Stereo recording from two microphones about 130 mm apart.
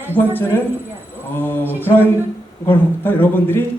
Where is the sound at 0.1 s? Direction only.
15° left (ahead or behind).